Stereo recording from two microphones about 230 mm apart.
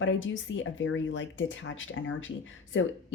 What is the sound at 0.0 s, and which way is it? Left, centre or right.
A woman's voice, left.